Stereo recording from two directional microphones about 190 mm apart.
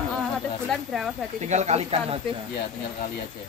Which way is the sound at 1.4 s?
35° right (ahead or behind).